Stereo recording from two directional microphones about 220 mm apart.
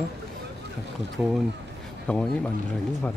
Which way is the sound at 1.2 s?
5° right (ahead or behind).